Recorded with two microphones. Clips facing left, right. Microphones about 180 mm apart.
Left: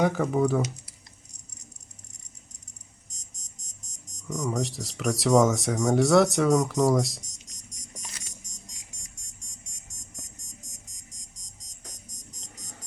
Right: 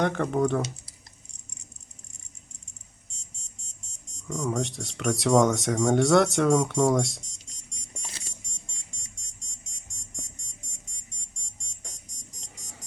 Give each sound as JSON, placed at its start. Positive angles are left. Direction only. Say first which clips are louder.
{"t": 0.0, "sound": "speech", "louder": "left 1 dB", "side_deg": 5}
{"t": 3.1, "sound": "alarm clock", "louder": "even", "side_deg": -30}
{"t": 4.3, "sound": "speech", "louder": "even", "side_deg": 0}
{"t": 12.5, "sound": "music", "louder": "left 1 dB", "side_deg": -5}